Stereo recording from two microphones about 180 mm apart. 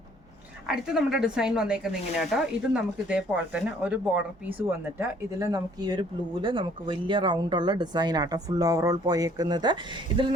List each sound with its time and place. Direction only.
0.7 s speech: 5° right (ahead or behind); by 10.2 s 25° right (ahead or behind)